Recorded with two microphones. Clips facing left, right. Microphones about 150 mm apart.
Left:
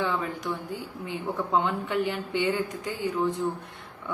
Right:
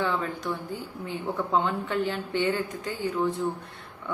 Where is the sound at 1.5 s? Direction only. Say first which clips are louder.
Left 1 dB; 15° left (ahead or behind).